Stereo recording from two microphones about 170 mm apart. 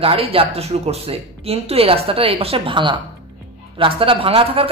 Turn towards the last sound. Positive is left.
turn(degrees=-35)  # may be behind; listen again after turning